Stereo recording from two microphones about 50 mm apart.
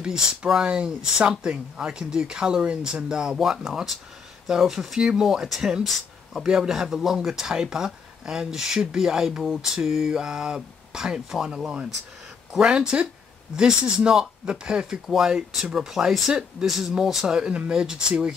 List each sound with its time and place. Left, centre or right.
0.0 s speech: centre
3.3 s speech: centre
5.9 s speech: centre
6.4 s speech: centre